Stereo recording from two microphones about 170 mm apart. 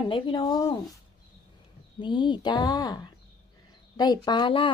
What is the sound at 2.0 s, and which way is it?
Speech, 25° left (ahead or behind).